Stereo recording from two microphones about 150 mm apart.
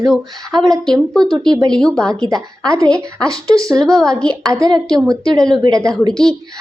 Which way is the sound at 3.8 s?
5° left (ahead or behind).